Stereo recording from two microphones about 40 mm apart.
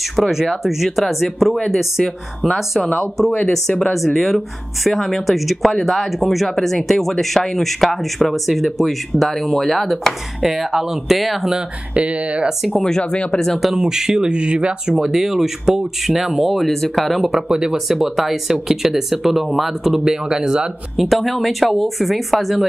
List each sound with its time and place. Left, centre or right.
0.7 s speech: centre
11.9 s speech: right
13.1 s speech: left
13.7 s speech: centre
15.0 s speech: centre
17.5 s speech: centre
20.9 s speech: centre